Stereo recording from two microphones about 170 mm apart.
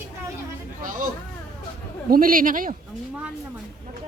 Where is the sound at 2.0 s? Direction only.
55° right (ahead or behind).